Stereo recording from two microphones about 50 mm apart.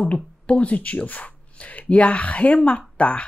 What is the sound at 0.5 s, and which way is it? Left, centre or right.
Speech, left.